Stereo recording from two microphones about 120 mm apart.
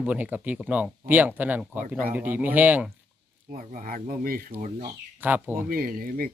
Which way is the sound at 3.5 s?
90° right.